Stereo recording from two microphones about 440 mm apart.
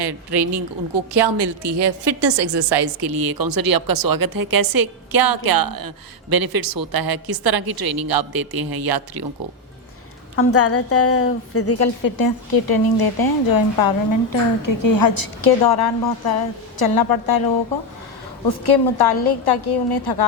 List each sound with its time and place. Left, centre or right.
0.0 s a woman's voice: right
10.3 s a woman's voice: left
12.0 s a woman's voice: left
18.4 s a woman's voice: left